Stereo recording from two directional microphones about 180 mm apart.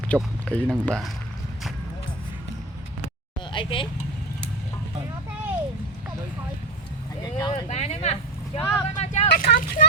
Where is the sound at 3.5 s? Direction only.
30° left (ahead or behind).